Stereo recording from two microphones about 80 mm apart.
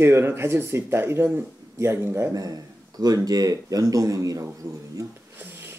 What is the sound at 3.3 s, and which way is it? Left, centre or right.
Speech, right.